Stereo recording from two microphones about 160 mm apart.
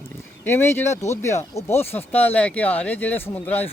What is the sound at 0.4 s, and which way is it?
Speech, 15° left (ahead or behind).